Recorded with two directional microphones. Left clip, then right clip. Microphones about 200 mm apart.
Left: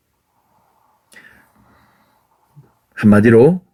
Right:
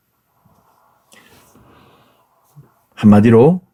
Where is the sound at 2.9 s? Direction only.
20° right (ahead or behind).